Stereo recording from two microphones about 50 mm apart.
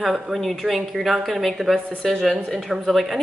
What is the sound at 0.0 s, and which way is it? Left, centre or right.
A woman's voice, centre.